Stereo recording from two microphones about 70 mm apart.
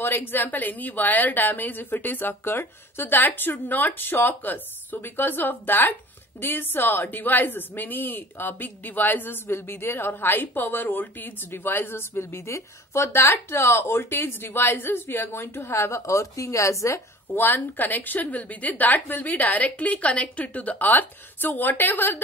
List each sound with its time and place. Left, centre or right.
0.0 s speech: left
17.3 s speech: left